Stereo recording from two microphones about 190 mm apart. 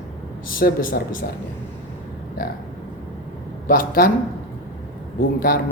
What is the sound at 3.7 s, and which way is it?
Speech, 50° left (ahead or behind).